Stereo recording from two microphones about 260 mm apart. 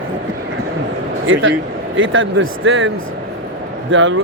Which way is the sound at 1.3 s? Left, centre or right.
Right.